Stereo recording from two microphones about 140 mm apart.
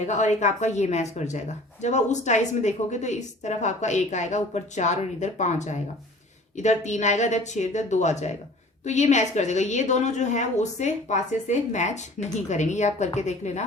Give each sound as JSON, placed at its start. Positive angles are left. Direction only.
{"t": 0.0, "sound": "a woman's voice", "side_deg": 55}